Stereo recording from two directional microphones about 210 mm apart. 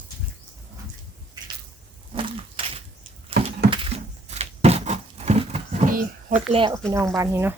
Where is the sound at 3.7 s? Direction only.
30° right (ahead or behind).